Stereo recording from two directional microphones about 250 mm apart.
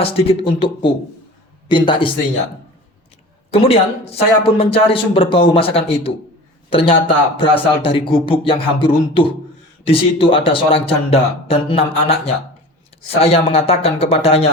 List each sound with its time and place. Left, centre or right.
0.0 s speech: left
3.5 s a man's voice: left